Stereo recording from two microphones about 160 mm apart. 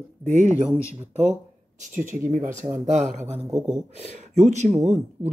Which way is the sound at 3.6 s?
5° right (ahead or behind).